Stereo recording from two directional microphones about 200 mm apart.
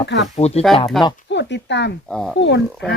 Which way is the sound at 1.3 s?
60° left (ahead or behind).